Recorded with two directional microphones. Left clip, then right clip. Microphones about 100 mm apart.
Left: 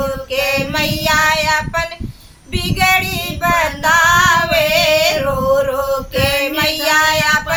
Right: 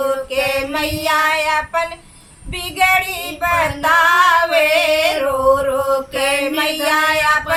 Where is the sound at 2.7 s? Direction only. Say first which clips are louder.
Even; 20° left (ahead or behind).